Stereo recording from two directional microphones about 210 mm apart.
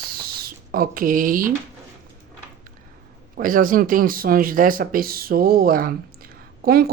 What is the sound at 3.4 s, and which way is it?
Speech, 40° right (ahead or behind).